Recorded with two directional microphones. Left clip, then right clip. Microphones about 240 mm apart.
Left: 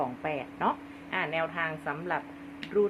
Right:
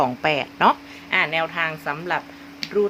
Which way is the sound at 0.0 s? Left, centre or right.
Right.